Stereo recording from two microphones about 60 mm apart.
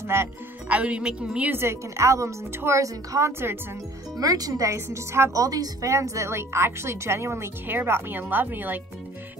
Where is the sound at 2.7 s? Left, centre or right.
Right.